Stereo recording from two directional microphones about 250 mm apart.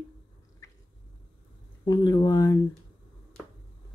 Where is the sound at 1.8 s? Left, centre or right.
Centre.